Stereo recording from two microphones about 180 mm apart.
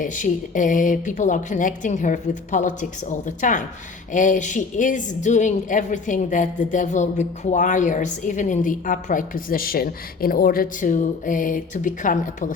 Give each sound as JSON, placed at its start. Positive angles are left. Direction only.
{"t": 0.0, "sound": "a woman's voice", "side_deg": 45}